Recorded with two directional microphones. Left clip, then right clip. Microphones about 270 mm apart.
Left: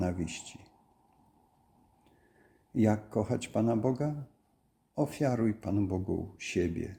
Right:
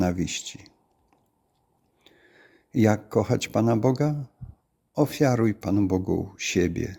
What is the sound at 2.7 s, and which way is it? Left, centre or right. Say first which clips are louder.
Speech: right 7 dB; right.